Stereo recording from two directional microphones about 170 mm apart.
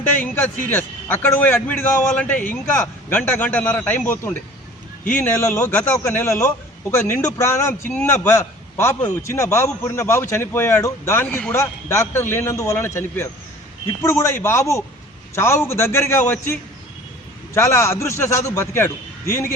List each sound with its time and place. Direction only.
0.0 s a man's voice: 10° left (ahead or behind)